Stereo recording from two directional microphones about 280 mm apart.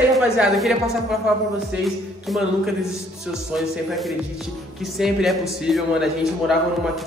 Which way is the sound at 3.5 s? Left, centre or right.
Centre.